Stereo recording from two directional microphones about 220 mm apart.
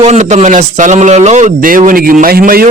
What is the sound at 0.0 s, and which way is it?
A man's voice, 30° right (ahead or behind).